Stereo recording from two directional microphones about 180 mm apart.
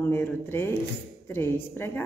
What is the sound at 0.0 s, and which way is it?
Speech, 10° left (ahead or behind).